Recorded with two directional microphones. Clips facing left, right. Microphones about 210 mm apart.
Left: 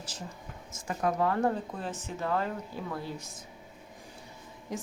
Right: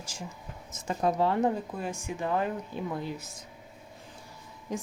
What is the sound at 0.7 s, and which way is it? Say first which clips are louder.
Speech: right 2 dB; 25° right (ahead or behind).